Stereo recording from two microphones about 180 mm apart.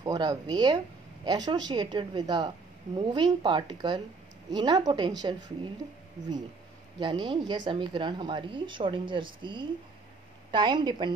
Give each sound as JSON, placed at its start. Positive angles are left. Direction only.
{"t": 0.0, "sound": "speech", "side_deg": -20}
{"t": 7.0, "sound": "speech", "side_deg": -25}